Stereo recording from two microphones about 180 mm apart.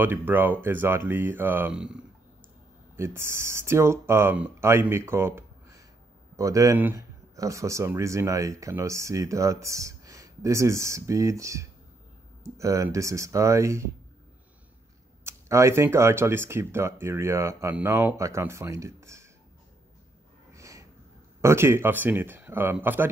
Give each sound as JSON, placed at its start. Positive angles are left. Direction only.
{"t": 0.0, "sound": "speech", "side_deg": -10}
{"t": 3.0, "sound": "speech", "side_deg": -15}
{"t": 15.2, "sound": "speech", "side_deg": -15}
{"t": 20.5, "sound": "snort", "side_deg": -15}
{"t": 21.4, "sound": "speech", "side_deg": -15}